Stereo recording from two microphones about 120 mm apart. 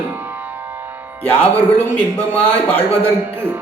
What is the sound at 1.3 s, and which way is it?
Speech, 15° left (ahead or behind).